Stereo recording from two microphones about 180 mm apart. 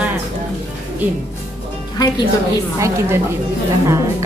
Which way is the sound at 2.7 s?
15° right (ahead or behind).